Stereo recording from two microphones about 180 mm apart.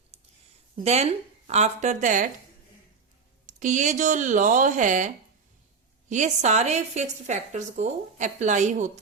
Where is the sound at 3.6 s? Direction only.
45° right (ahead or behind).